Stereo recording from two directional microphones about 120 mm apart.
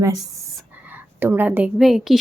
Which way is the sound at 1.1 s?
15° right (ahead or behind).